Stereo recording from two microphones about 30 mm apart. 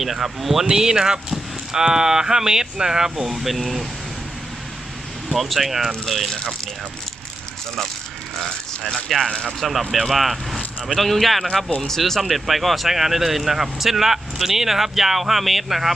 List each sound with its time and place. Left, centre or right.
0.0 s speech: centre
0.7 s speech: right
3.3 s speech: centre
5.3 s speech: centre
9.0 s speech: centre
12.2 s speech: centre